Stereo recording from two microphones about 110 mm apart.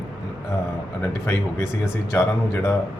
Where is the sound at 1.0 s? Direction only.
25° left (ahead or behind).